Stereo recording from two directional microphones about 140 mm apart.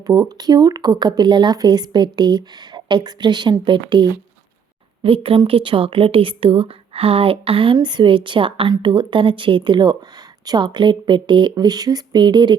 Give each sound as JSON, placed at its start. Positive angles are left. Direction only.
{"t": 0.0, "sound": "speech", "side_deg": -30}